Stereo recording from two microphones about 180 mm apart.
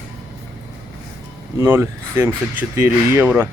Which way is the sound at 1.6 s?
15° right (ahead or behind).